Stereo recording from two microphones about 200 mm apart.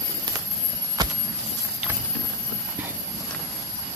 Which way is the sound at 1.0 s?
20° right (ahead or behind).